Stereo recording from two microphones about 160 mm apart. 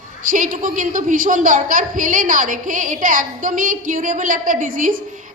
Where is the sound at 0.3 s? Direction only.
55° right (ahead or behind).